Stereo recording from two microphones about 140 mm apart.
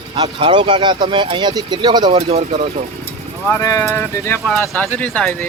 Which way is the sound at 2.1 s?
45° right (ahead or behind).